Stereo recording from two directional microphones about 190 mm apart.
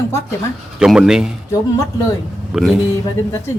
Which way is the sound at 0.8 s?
5° right (ahead or behind).